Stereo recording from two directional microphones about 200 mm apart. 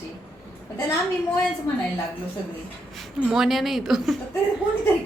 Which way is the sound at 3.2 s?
5° right (ahead or behind).